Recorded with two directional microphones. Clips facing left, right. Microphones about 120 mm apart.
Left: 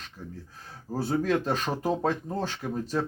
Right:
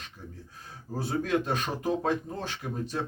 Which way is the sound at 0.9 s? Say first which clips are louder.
Left 2 dB; 40° left (ahead or behind).